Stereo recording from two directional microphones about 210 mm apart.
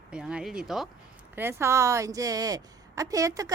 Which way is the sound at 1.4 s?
10° right (ahead or behind).